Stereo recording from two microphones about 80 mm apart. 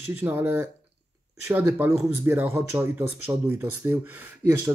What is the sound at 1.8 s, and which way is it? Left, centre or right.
Speech, right.